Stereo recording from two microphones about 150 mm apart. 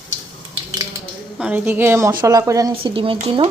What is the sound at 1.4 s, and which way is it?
A woman's voice, 10° right (ahead or behind).